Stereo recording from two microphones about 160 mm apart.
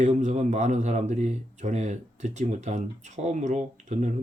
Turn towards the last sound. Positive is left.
turn(degrees=-50)  # may be behind; listen again after turning